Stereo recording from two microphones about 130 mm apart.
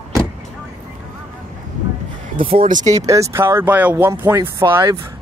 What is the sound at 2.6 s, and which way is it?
Speech, 85° right.